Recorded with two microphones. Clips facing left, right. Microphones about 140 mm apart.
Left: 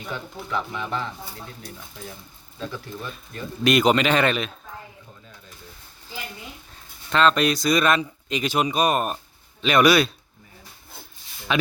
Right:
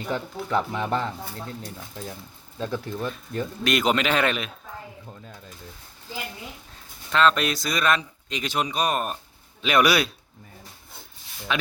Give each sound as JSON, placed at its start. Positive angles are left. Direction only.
{"t": 0.1, "sound": "speech", "side_deg": -45}
{"t": 2.6, "sound": "speech", "side_deg": -45}
{"t": 3.6, "sound": "speech", "side_deg": 0}
{"t": 7.1, "sound": "speech", "side_deg": 0}
{"t": 9.6, "sound": "speech", "side_deg": -5}